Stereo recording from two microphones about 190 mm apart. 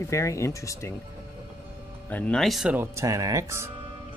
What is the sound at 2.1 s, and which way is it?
Speech, 5° left (ahead or behind).